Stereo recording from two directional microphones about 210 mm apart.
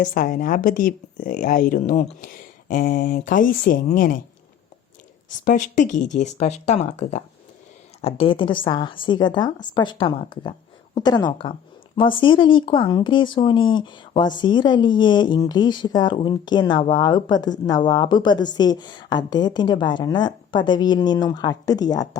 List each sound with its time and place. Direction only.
0.0 s speech: 40° left (ahead or behind)
5.5 s speech: 35° left (ahead or behind); by 22.2 s 20° left (ahead or behind)